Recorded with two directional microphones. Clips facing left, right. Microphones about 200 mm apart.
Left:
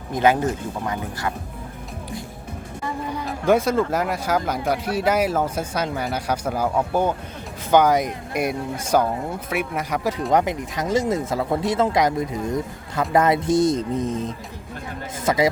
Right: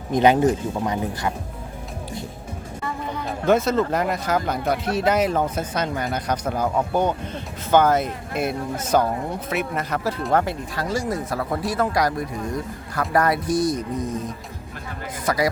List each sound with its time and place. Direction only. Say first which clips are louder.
0.1 s speech: right 3 dB; 20° right (ahead or behind)
3.4 s speech: even; 10° left (ahead or behind)